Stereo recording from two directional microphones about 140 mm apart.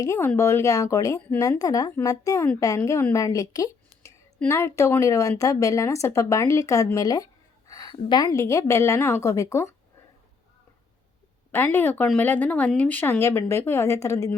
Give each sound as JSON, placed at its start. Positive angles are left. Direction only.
{"t": 0.0, "sound": "a woman's voice", "side_deg": 20}
{"t": 8.3, "sound": "a woman's voice", "side_deg": 20}
{"t": 11.5, "sound": "speech", "side_deg": 15}